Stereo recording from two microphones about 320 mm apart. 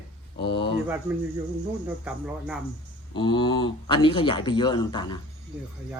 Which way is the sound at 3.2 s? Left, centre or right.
Centre.